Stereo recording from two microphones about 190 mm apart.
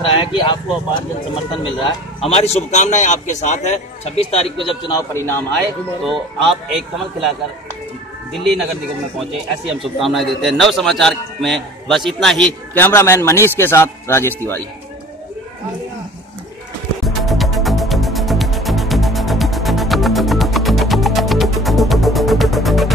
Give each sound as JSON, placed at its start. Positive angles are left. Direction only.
{"t": 0.0, "sound": "speech", "side_deg": 25}
{"t": 4.6, "sound": "a man's voice", "side_deg": 20}
{"t": 6.4, "sound": "a man's voice", "side_deg": 0}
{"t": 8.3, "sound": "a man's voice", "side_deg": 0}
{"t": 9.8, "sound": "a man's voice", "side_deg": 0}
{"t": 17.0, "sound": "music", "side_deg": 0}